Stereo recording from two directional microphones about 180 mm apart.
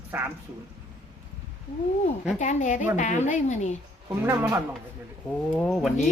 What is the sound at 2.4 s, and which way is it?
Speech, 40° left (ahead or behind).